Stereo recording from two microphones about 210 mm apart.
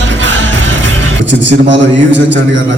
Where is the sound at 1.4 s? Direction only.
60° right (ahead or behind).